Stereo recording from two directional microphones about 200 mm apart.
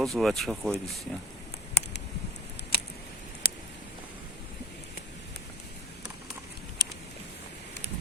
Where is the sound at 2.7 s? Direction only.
50° left (ahead or behind).